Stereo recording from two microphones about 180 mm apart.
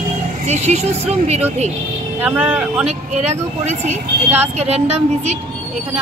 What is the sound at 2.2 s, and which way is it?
Speech, 10° right (ahead or behind).